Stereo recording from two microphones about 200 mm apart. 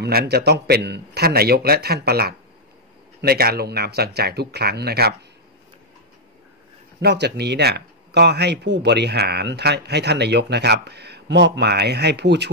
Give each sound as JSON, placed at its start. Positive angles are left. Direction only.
{"t": 0.0, "sound": "a man's voice", "side_deg": -55}
{"t": 7.0, "sound": "speech", "side_deg": -55}